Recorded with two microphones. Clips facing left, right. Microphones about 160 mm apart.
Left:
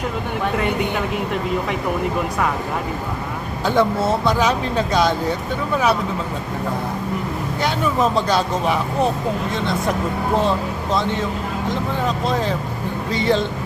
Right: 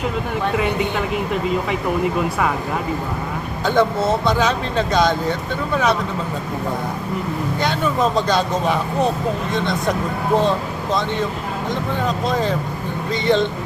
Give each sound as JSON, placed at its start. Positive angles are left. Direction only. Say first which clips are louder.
{"t": 3.7, "sound": "speech", "louder": "right 1 dB", "side_deg": 10}
{"t": 7.6, "sound": "speech", "louder": "even", "side_deg": 5}
{"t": 12.3, "sound": "speech", "louder": "right 1 dB", "side_deg": 0}